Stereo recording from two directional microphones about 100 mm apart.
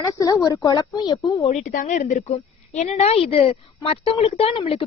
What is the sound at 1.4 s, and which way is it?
A woman's voice, 90° left.